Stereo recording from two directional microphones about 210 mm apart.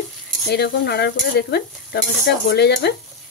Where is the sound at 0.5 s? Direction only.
50° left (ahead or behind).